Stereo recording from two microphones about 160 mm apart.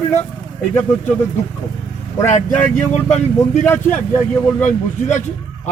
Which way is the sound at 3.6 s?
10° left (ahead or behind).